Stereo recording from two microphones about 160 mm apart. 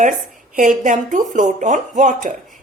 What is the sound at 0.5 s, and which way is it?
A woman's voice, 55° right (ahead or behind).